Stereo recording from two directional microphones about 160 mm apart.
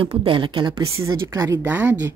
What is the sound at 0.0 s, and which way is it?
A woman's voice, 35° right (ahead or behind).